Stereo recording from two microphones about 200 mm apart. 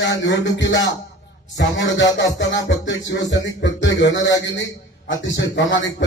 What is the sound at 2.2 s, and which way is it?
Speech, 65° left (ahead or behind).